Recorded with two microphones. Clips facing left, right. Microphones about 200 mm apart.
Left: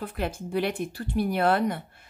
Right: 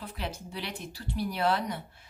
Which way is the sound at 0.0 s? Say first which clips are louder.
Left 7 dB; 50° left (ahead or behind).